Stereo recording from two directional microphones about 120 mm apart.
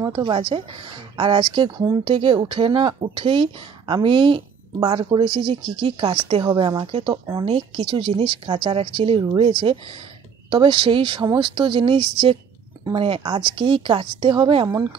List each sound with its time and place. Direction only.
0.1 s speech: 45° right (ahead or behind)
6.9 s speech: 50° right (ahead or behind)